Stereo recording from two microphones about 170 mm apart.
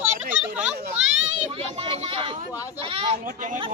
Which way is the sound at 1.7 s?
35° right (ahead or behind).